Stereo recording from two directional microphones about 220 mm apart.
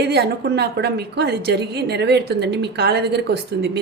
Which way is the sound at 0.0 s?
50° right (ahead or behind).